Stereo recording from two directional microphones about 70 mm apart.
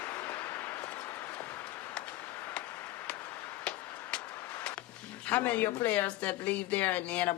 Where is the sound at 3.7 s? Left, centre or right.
Centre.